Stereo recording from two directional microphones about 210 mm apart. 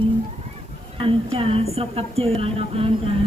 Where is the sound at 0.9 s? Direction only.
25° right (ahead or behind).